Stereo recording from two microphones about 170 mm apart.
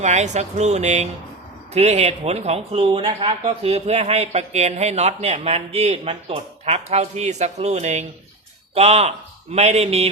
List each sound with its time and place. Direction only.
0.0 s a man's voice: 45° right (ahead or behind)